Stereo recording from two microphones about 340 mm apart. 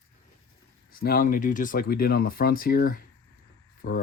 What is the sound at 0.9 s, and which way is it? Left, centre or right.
Speech, left.